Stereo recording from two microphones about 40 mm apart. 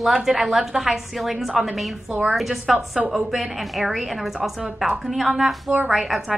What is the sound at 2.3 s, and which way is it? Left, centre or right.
A woman's voice, centre.